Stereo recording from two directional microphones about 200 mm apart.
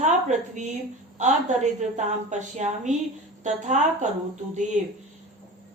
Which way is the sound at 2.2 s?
35° right (ahead or behind).